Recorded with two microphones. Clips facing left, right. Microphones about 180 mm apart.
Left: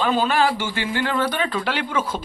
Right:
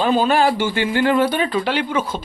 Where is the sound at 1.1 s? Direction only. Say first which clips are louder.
Right 6 dB; 10° right (ahead or behind).